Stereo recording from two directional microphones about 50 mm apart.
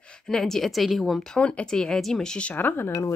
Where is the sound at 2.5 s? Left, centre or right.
Left.